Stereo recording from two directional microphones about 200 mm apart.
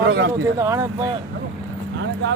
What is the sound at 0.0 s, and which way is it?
Speech, 60° right (ahead or behind).